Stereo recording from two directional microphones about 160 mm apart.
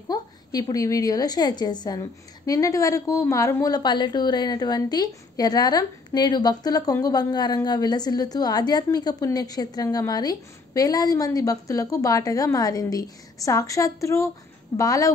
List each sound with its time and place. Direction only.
0.1 s a woman's voice: 25° left (ahead or behind)